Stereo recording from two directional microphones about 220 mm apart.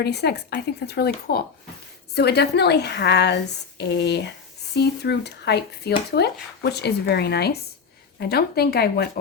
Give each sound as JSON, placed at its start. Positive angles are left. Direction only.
{"t": 0.0, "sound": "a woman's voice", "side_deg": 50}